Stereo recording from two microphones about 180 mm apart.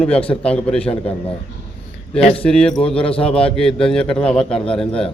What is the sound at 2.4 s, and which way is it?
Speech, 5° left (ahead or behind).